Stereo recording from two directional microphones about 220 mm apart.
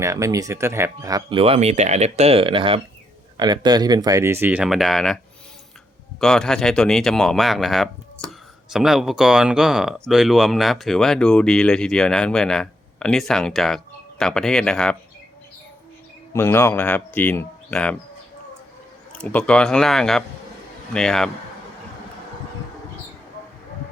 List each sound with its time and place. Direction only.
0.0 s speech: 15° right (ahead or behind); by 14.9 s 5° left (ahead or behind)
16.3 s speech: 10° left (ahead or behind)
19.1 s speech: 5° left (ahead or behind)